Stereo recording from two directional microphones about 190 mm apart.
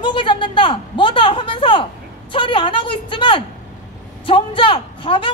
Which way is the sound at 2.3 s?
25° left (ahead or behind).